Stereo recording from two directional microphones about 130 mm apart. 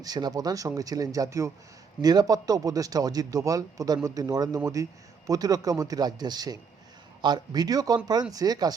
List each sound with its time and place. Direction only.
0.0 s a man's voice: 30° right (ahead or behind)